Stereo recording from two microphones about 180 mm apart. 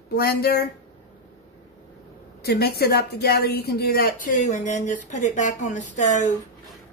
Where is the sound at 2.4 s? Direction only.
60° left (ahead or behind); by 6.2 s 40° left (ahead or behind).